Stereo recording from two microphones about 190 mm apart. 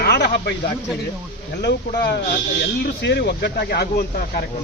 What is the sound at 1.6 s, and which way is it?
Speech, 65° left (ahead or behind).